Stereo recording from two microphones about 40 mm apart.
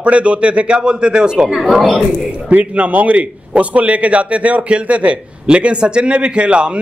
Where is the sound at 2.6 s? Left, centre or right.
Right.